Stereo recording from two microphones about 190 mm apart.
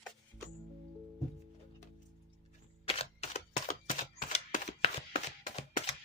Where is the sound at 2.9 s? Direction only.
35° left (ahead or behind).